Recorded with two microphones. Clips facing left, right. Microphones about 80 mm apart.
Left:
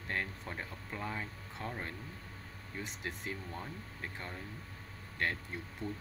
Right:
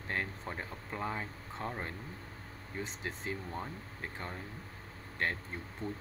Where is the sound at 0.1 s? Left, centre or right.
Centre.